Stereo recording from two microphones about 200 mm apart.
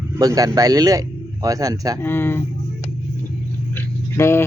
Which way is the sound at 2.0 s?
10° left (ahead or behind).